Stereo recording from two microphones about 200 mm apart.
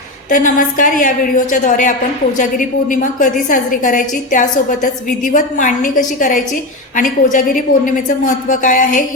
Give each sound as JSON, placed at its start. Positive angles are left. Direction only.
{"t": 0.3, "sound": "a woman's voice", "side_deg": 40}